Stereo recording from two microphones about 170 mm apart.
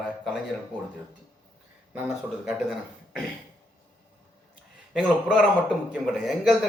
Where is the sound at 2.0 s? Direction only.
10° right (ahead or behind).